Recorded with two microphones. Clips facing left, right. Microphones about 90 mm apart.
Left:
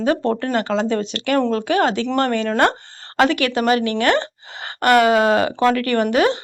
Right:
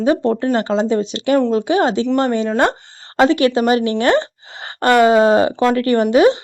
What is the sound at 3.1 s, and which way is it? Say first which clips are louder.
Speech: right 4 dB; 25° right (ahead or behind).